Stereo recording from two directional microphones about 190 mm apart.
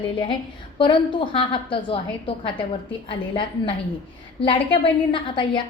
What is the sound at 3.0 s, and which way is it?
A woman's voice, 30° left (ahead or behind).